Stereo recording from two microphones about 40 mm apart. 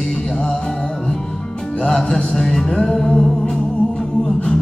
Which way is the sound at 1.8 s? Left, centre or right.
Centre.